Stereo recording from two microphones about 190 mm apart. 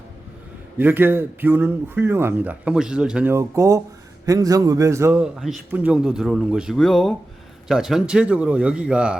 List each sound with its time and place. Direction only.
0.8 s a man's voice: 10° right (ahead or behind)